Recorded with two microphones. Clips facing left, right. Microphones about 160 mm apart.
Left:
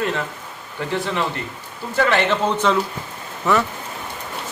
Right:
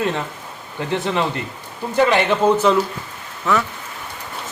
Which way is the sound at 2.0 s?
15° right (ahead or behind).